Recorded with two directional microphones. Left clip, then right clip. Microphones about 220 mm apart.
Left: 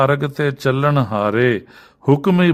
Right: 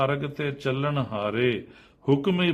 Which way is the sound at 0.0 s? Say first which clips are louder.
Left 10 dB; 50° left (ahead or behind).